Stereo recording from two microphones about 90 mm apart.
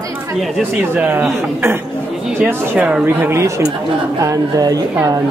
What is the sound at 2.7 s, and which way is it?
Speech, 15° right (ahead or behind).